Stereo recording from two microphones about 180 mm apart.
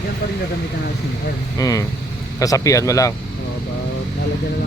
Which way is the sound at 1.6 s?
20° left (ahead or behind).